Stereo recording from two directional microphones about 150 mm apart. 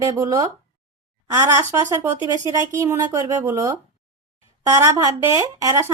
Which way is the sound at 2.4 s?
20° right (ahead or behind).